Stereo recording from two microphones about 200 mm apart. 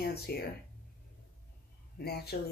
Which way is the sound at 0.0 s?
50° left (ahead or behind).